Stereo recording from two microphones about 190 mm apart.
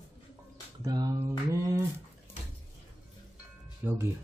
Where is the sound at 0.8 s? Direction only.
20° right (ahead or behind).